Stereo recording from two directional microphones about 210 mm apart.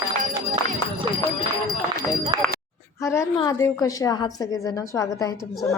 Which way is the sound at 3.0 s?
15° left (ahead or behind).